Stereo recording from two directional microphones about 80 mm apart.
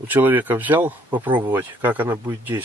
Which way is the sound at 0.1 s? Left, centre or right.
Right.